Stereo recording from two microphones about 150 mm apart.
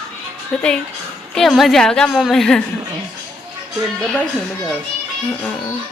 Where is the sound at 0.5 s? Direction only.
5° left (ahead or behind).